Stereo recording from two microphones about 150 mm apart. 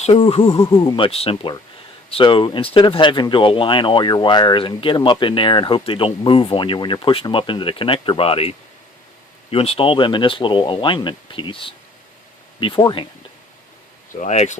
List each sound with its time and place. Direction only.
0.0 s speech: 40° left (ahead or behind)
14.1 s speech: 55° left (ahead or behind)